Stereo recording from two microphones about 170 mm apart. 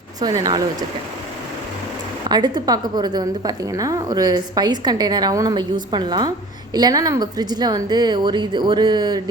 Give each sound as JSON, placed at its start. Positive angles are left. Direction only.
{"t": 0.2, "sound": "a woman's voice", "side_deg": -20}
{"t": 2.3, "sound": "a woman's voice", "side_deg": -25}